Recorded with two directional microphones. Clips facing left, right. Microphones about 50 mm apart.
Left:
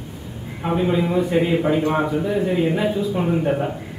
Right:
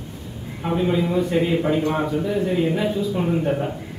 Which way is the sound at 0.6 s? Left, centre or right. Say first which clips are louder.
Left 1 dB; centre.